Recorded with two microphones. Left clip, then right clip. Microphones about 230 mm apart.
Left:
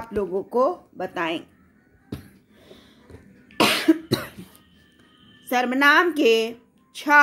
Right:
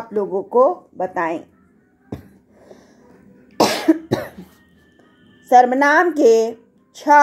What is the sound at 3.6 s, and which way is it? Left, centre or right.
Cough, centre.